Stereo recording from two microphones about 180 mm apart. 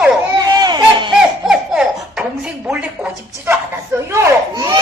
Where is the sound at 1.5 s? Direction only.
5° right (ahead or behind).